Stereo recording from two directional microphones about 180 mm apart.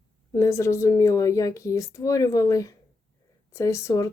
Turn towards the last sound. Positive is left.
turn(degrees=15)  # may be behind; listen again after turning